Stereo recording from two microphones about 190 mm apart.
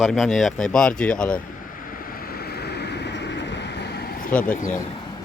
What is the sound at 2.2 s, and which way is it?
Vehicle, 55° left (ahead or behind).